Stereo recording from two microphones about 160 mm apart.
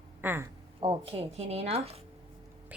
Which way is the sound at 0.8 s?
35° right (ahead or behind).